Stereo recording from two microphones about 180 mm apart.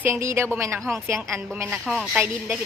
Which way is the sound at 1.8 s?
5° right (ahead or behind).